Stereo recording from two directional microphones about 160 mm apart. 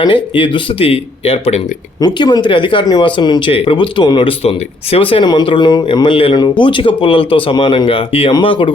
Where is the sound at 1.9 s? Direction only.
25° left (ahead or behind).